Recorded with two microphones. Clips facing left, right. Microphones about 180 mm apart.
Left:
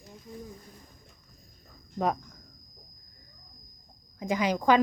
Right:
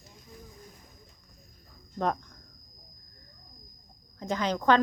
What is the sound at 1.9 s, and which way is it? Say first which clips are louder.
Speech: left 1 dB; 5° left (ahead or behind).